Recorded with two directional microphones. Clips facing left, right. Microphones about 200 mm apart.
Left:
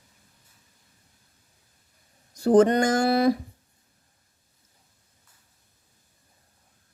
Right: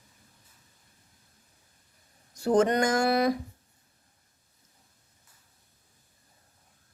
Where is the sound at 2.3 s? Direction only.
35° left (ahead or behind).